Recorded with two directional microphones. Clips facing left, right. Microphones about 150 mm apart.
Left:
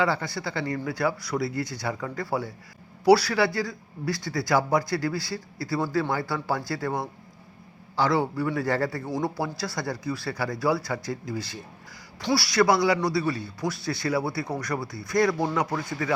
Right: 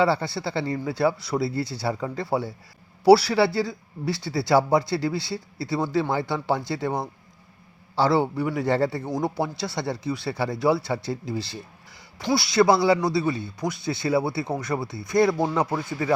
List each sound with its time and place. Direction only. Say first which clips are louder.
0.0 s speech: right 4 dB; 30° right (ahead or behind)